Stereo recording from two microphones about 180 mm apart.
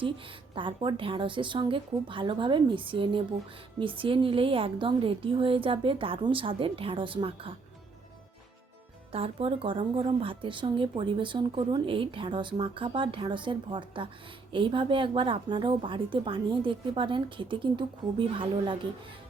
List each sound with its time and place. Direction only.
0.5 s speech: 25° right (ahead or behind)
9.1 s speech: 30° right (ahead or behind)